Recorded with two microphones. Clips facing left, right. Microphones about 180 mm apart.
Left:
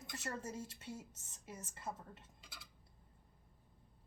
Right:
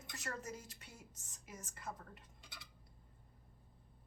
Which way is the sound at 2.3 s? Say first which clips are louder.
Right 1 dB; 5° left (ahead or behind).